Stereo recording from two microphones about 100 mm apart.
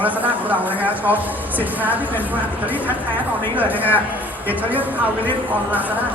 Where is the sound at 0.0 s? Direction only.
15° right (ahead or behind).